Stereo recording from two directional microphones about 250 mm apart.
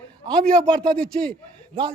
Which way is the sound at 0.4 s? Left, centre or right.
Centre.